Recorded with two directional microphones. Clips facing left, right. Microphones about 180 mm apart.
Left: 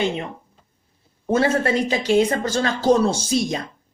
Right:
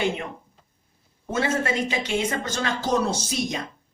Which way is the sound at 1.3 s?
35° left (ahead or behind).